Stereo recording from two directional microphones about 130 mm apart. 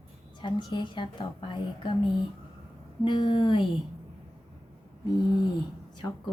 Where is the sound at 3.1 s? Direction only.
40° left (ahead or behind).